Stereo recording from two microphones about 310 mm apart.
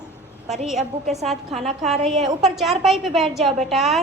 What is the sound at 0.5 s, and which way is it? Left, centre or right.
A woman's voice, centre.